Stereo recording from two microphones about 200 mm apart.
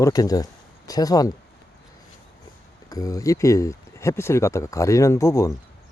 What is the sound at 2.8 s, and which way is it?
Speech, 15° left (ahead or behind).